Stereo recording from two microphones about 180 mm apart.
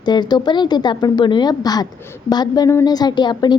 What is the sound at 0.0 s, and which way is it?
A woman's voice, 25° left (ahead or behind).